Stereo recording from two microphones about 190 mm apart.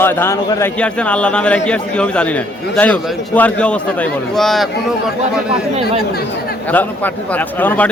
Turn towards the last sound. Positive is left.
turn(degrees=10)  # may be behind; listen again after turning